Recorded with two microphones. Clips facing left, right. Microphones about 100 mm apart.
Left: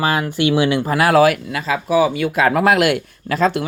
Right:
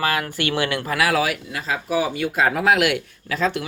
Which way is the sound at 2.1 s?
90° left.